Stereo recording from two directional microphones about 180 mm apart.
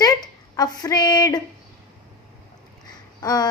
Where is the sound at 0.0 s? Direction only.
20° left (ahead or behind).